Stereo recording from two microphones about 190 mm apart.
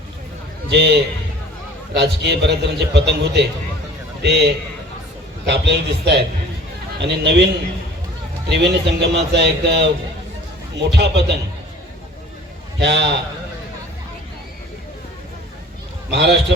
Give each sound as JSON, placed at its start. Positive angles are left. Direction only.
{"t": 0.7, "sound": "a man's voice", "side_deg": -65}
{"t": 8.4, "sound": "a man's voice", "side_deg": -60}
{"t": 12.8, "sound": "a man's voice", "side_deg": -65}
{"t": 16.0, "sound": "a man's voice", "side_deg": -65}